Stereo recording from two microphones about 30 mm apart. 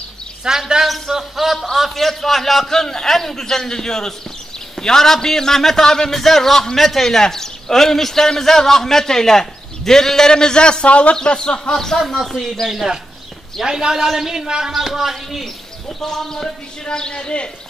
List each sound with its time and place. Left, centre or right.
0.4 s a woman's voice: centre
0.8 s a man's voice: centre
2.7 s a man's voice: centre
10.3 s a man's voice: left
10.9 s speech: left
11.2 s a man's voice: left
11.7 s a man's voice: centre
12.2 s a man's voice: centre
13.6 s a man's voice: centre
14.2 s speech: centre
16.0 s a man's voice: centre
16.8 s a man's voice: left